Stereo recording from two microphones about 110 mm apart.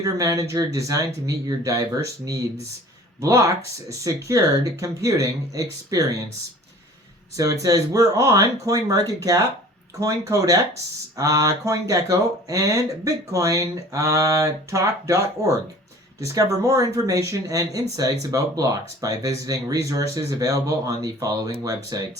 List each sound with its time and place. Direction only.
0.0 s speech: 30° right (ahead or behind)
7.3 s speech: 30° right (ahead or behind)